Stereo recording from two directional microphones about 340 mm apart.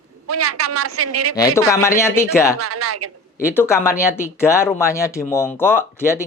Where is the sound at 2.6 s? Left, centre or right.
Right.